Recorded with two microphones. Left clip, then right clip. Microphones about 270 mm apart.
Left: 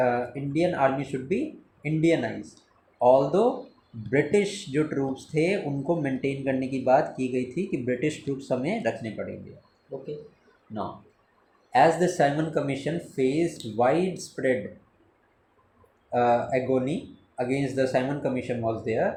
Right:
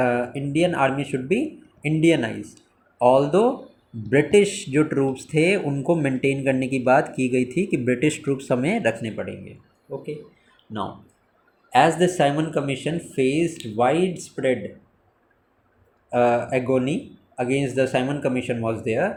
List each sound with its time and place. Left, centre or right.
0.0 s speech: right
11.8 s speech: right
16.1 s speech: centre